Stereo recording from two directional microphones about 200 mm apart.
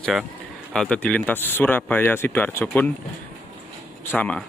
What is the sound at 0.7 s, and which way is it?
Speech, 5° left (ahead or behind).